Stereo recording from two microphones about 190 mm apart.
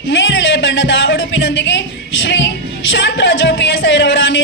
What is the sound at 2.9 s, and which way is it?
Music, 70° left (ahead or behind).